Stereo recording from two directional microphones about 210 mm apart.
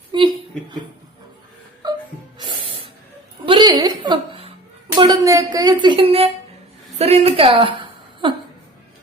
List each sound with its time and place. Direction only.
0.1 s a sound: 20° right (ahead or behind)
1.8 s wail: 20° right (ahead or behind)
2.4 s spray: 20° right (ahead or behind)
3.4 s music: 20° right (ahead or behind)
4.9 s a woman's voice: 20° right (ahead or behind)